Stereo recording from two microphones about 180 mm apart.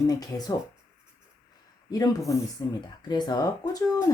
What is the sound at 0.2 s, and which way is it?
Speech, 20° left (ahead or behind).